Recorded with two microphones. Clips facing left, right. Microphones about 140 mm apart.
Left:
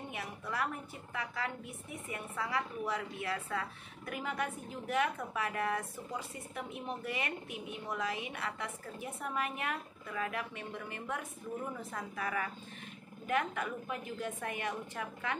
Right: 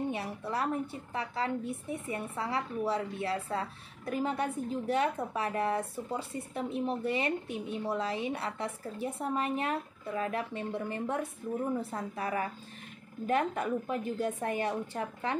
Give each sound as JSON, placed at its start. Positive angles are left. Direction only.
{"t": 0.1, "sound": "a woman's voice", "side_deg": -30}